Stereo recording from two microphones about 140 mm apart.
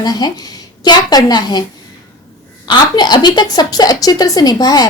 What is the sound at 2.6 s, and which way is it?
A woman's voice, 30° left (ahead or behind).